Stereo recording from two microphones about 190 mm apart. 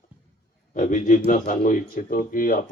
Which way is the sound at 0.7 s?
40° left (ahead or behind).